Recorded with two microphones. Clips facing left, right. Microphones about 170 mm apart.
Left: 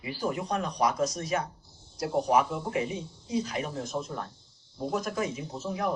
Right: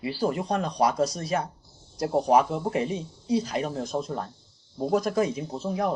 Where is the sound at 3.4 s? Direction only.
35° right (ahead or behind).